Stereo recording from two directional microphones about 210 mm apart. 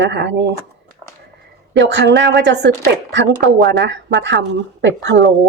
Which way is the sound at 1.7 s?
55° right (ahead or behind).